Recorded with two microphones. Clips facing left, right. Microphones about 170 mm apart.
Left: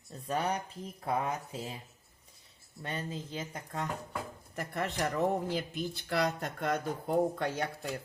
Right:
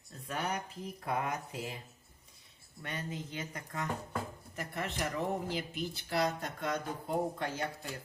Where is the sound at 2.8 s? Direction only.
30° left (ahead or behind).